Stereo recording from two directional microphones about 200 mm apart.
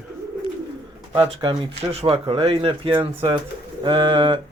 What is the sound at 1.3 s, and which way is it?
Speech, 25° right (ahead or behind).